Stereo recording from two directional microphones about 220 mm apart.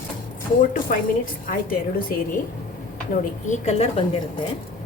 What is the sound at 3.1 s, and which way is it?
A woman's voice, 35° left (ahead or behind).